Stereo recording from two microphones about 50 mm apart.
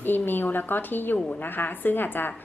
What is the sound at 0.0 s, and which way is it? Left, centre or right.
A woman's voice, left.